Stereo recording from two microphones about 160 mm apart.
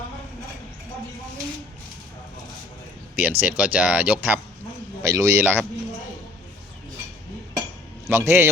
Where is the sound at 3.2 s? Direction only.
10° right (ahead or behind).